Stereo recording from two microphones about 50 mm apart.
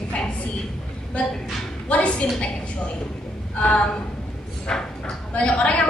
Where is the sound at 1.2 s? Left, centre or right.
Left.